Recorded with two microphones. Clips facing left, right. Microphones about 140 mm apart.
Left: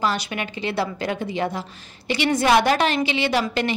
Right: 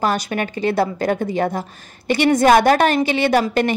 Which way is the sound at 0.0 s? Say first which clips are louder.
Right 4 dB; 45° right (ahead or behind).